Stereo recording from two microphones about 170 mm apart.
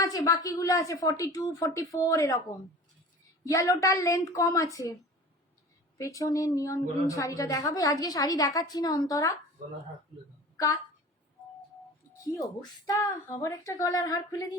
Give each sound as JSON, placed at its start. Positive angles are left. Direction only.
{"t": 0.0, "sound": "a woman's voice", "side_deg": 20}
{"t": 3.4, "sound": "a woman's voice", "side_deg": 20}
{"t": 6.0, "sound": "a woman's voice", "side_deg": 20}
{"t": 12.2, "sound": "a woman's voice", "side_deg": 20}